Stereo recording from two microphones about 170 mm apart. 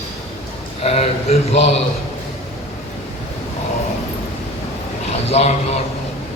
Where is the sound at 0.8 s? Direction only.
35° left (ahead or behind).